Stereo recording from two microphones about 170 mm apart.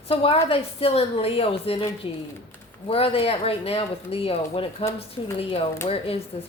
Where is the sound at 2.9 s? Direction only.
35° left (ahead or behind).